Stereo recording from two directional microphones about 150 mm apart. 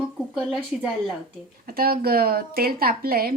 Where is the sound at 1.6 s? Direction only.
80° right.